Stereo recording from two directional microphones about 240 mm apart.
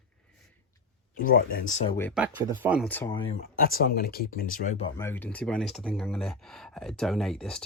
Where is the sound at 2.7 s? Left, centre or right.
Centre.